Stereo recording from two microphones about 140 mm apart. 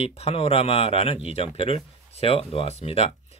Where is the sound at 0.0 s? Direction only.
45° left (ahead or behind).